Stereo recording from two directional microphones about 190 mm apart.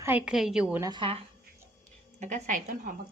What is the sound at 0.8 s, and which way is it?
Speech, 25° right (ahead or behind).